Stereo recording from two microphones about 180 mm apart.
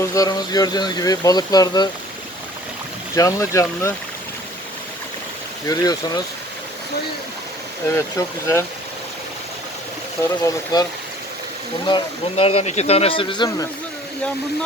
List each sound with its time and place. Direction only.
0.0 s speech: 20° left (ahead or behind)
3.2 s speech: 15° left (ahead or behind)
5.6 s speech: 20° left (ahead or behind)
7.9 s speech: 15° left (ahead or behind)
10.4 s speech: 20° left (ahead or behind)
11.9 s speech: 30° left (ahead or behind)